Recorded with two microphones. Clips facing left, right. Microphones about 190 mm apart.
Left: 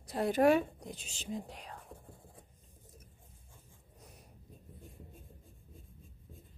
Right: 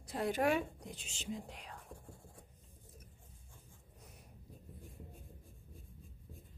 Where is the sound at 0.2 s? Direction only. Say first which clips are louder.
Left 6 dB; 40° left (ahead or behind).